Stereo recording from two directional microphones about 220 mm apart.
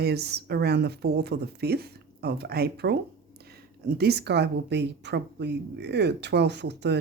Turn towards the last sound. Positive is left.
turn(degrees=-50)  # may be behind; listen again after turning